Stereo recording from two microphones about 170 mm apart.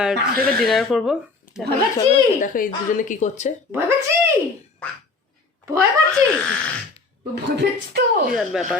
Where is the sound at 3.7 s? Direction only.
15° right (ahead or behind).